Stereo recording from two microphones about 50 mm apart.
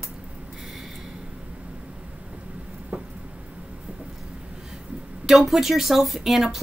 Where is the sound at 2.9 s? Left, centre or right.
Right.